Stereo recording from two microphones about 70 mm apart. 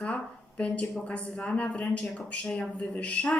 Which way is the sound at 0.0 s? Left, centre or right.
Centre.